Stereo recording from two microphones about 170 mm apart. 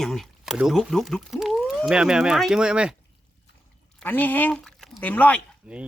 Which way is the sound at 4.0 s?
10° left (ahead or behind).